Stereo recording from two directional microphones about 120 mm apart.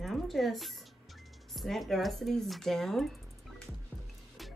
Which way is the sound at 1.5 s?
Centre (ahead or behind).